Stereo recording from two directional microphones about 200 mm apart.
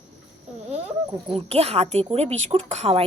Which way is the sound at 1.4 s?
30° right (ahead or behind).